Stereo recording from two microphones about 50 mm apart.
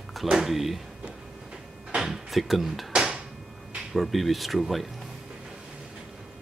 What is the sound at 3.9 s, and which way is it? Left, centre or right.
Speech, centre.